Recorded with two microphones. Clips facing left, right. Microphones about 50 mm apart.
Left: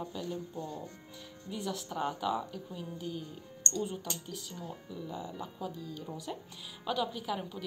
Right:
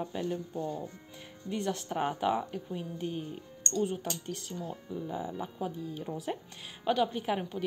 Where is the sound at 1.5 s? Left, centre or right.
Centre.